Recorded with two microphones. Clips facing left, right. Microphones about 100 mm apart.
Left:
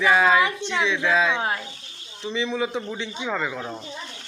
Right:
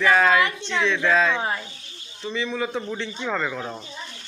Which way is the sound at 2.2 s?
20° left (ahead or behind).